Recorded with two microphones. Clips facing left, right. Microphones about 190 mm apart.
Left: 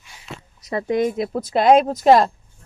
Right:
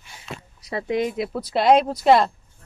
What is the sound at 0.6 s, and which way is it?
Speech, 45° left (ahead or behind).